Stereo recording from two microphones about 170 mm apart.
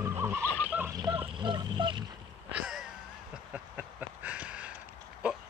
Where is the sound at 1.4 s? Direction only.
25° right (ahead or behind).